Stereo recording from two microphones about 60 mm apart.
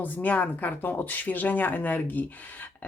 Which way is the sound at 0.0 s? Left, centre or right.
Left.